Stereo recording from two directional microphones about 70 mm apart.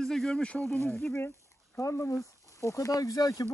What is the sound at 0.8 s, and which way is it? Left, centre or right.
Speech, left.